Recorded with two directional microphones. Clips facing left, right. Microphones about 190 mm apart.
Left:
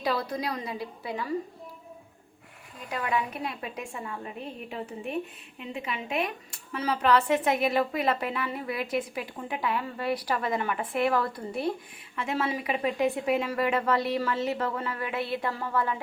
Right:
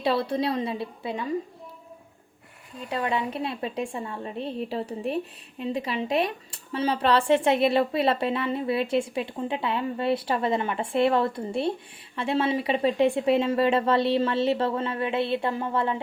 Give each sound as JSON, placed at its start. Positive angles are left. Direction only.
{"t": 0.0, "sound": "a woman's voice", "side_deg": -30}
{"t": 2.9, "sound": "a woman's voice", "side_deg": -30}